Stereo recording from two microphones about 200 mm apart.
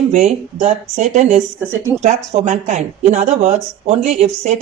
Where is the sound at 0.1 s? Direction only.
35° right (ahead or behind).